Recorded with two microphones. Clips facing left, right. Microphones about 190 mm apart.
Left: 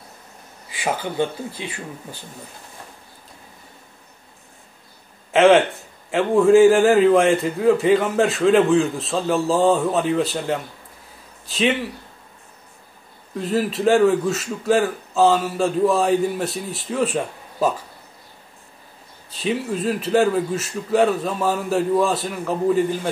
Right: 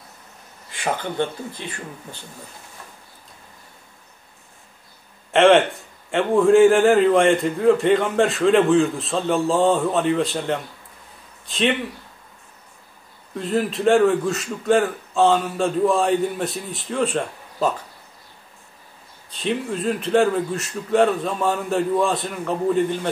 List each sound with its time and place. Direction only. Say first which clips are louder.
0.7 s speech: left 1 dB; 5° left (ahead or behind)
5.3 s a man's voice: left 1 dB; centre (ahead or behind)
13.4 s a man's voice: left 1 dB; centre (ahead or behind)
19.3 s a man's voice: left 1 dB; 5° left (ahead or behind)